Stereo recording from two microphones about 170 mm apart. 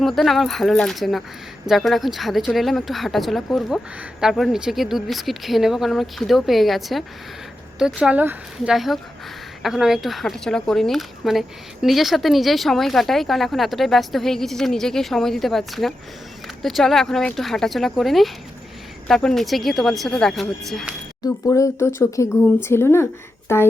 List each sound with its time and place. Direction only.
0.0 s speech: centre (ahead or behind)
21.2 s speech: 20° left (ahead or behind)